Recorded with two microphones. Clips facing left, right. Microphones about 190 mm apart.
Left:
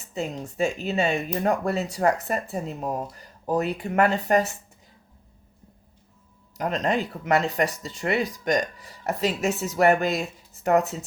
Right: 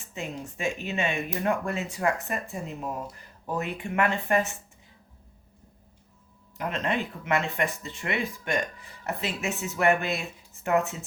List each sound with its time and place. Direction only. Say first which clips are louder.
0.1 s speech: left 5 dB; 35° left (ahead or behind)
6.6 s speech: left 4 dB; 40° left (ahead or behind)